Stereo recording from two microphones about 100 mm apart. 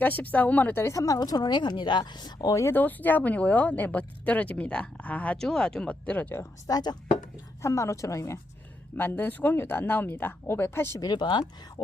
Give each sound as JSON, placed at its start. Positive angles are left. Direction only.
{"t": 0.0, "sound": "a woman's voice", "side_deg": 15}
{"t": 2.7, "sound": "speech", "side_deg": 20}
{"t": 6.7, "sound": "speech", "side_deg": 40}
{"t": 7.6, "sound": "speech", "side_deg": 30}
{"t": 9.0, "sound": "speech", "side_deg": 20}
{"t": 11.0, "sound": "a woman's voice", "side_deg": 50}